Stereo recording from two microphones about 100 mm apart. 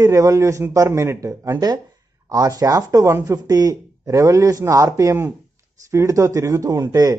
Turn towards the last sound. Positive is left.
turn(degrees=-40)  # may be behind; listen again after turning